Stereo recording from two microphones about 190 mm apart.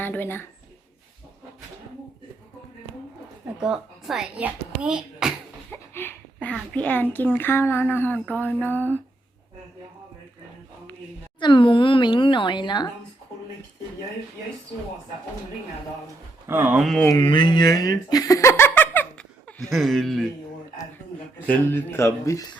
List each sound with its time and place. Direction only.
0.0 s speech: 10° left (ahead or behind)
3.6 s speech: 5° right (ahead or behind)
5.7 s speech: 10° left (ahead or behind)
11.3 s speech: 25° left (ahead or behind)
16.5 s speech: 5° right (ahead or behind)
17.0 s speech: 20° left (ahead or behind); by 20.2 s centre (ahead or behind)
21.4 s speech: 10° left (ahead or behind)